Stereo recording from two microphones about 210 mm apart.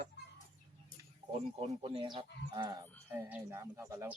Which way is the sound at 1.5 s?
30° right (ahead or behind).